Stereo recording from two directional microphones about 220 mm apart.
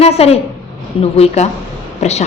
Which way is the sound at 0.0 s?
30° left (ahead or behind).